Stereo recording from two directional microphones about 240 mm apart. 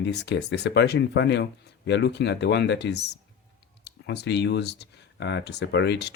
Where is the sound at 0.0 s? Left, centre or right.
Left.